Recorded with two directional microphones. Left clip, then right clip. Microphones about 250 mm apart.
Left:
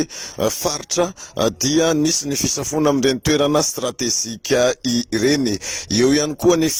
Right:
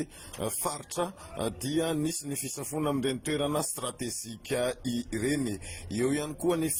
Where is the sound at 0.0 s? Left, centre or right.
Left.